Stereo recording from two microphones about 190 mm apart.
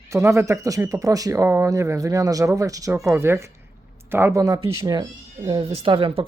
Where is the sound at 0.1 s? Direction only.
15° right (ahead or behind).